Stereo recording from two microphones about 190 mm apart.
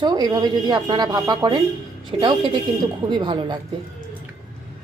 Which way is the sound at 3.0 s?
25° right (ahead or behind).